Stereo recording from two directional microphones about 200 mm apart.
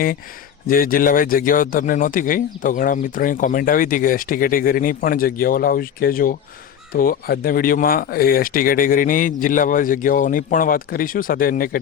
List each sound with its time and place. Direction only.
0.7 s speech: 45° left (ahead or behind)